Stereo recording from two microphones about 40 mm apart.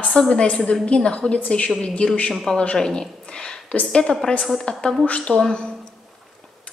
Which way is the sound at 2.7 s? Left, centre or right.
Centre.